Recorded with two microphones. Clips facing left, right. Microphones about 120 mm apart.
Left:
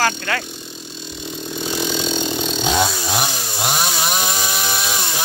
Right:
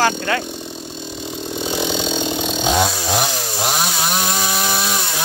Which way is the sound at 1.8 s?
20° right (ahead or behind).